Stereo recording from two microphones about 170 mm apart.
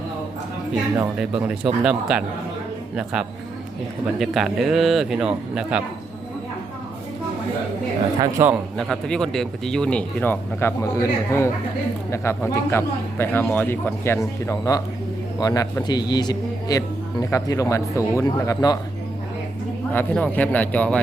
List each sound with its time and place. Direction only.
1.2 s speech: 5° right (ahead or behind)
8.2 s a man's voice: 15° right (ahead or behind)
8.8 s speech: 5° left (ahead or behind); by 18.8 s 20° left (ahead or behind)
19.9 s speech: 10° left (ahead or behind)